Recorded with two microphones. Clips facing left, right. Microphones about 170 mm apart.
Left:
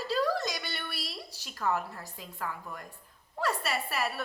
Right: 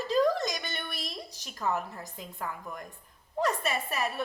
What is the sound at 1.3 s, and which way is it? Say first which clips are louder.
A woman's voice: even; 15° right (ahead or behind).